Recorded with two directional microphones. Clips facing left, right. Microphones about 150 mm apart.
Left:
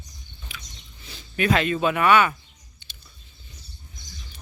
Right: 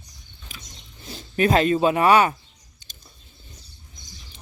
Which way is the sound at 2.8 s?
40° right (ahead or behind).